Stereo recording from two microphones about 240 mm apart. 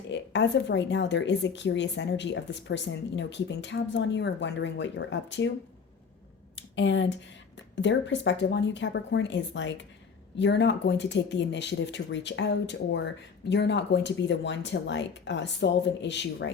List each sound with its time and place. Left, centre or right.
0.1 s speech: left
6.6 s a sound: left
7.5 s speech: left